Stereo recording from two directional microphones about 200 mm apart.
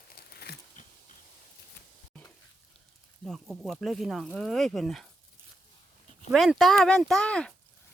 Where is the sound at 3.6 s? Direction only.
Centre (ahead or behind).